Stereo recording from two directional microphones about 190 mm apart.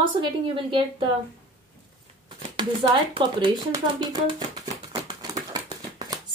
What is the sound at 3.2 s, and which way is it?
Speech, 25° right (ahead or behind).